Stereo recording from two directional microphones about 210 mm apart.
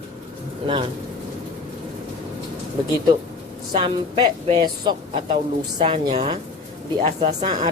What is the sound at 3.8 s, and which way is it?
A woman's voice, 20° right (ahead or behind).